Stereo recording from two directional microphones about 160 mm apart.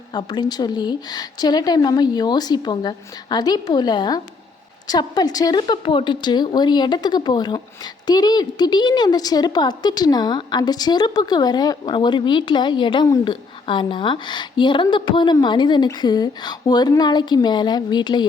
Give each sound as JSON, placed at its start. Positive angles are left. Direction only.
{"t": 0.1, "sound": "a woman's voice", "side_deg": 25}